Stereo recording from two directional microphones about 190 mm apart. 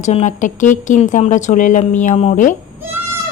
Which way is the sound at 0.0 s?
35° left (ahead or behind).